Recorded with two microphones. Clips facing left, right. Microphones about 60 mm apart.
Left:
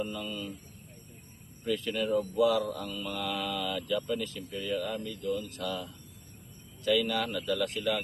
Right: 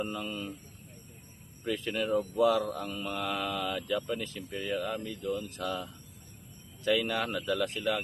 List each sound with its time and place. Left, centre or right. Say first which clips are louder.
0.0 s speech: even; right
1.6 s speech: left 1 dB; right